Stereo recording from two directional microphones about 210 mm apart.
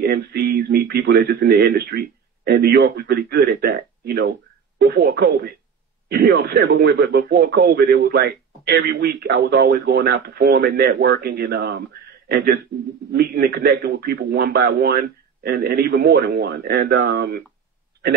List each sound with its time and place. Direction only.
0.0 s speech: 50° right (ahead or behind)